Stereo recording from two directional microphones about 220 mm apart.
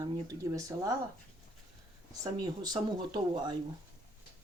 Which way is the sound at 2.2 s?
20° right (ahead or behind).